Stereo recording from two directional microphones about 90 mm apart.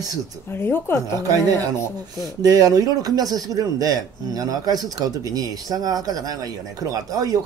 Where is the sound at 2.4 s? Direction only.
45° right (ahead or behind).